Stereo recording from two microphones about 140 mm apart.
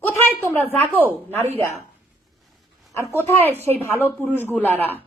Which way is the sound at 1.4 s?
50° right (ahead or behind).